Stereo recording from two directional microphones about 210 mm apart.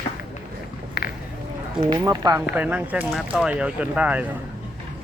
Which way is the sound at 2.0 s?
15° right (ahead or behind).